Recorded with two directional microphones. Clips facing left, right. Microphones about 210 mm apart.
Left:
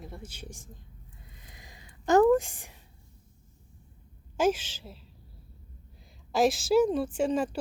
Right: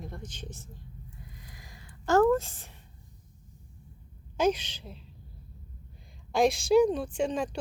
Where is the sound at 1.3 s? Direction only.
20° left (ahead or behind).